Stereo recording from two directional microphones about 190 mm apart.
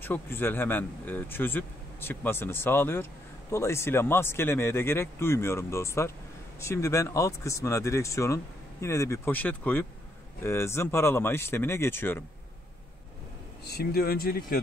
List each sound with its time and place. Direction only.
0.0 s speech: 10° left (ahead or behind)
13.7 s speech: 55° left (ahead or behind)